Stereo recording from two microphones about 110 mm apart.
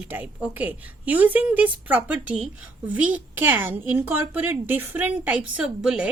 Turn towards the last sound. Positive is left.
turn(degrees=-10)  # may be behind; listen again after turning